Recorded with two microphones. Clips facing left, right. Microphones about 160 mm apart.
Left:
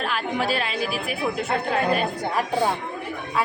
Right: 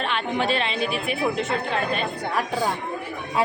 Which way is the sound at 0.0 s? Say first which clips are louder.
Right 1 dB; 5° left (ahead or behind).